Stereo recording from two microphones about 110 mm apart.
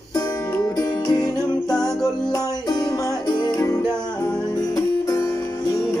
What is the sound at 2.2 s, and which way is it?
Music, 40° left (ahead or behind).